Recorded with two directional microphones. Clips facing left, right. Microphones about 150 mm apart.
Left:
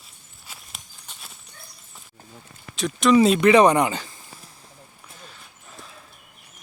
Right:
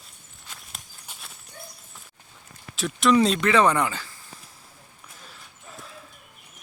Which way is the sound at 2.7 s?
Centre (ahead or behind).